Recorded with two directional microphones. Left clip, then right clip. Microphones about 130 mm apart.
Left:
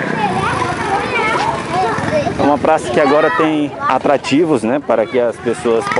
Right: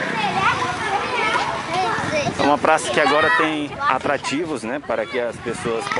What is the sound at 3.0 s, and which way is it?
Speech, 20° right (ahead or behind).